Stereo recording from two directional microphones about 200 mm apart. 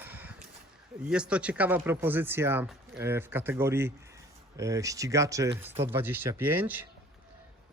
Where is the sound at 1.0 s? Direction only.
5° right (ahead or behind).